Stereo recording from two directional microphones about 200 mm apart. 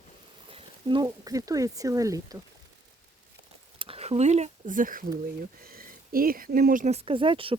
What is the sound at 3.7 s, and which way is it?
Speech, 30° right (ahead or behind).